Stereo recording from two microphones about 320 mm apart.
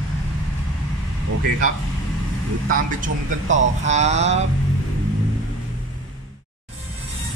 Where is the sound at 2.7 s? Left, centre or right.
Right.